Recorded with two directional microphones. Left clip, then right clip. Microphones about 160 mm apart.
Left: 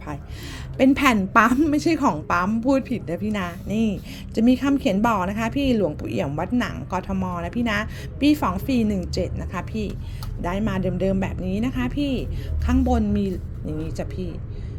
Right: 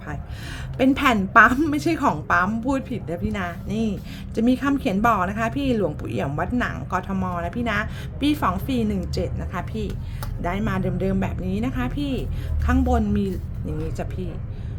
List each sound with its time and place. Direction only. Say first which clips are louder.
0.9 s a woman's voice: right 5 dB; 15° left (ahead or behind)
7.4 s a woman's voice: left 1 dB; 15° left (ahead or behind)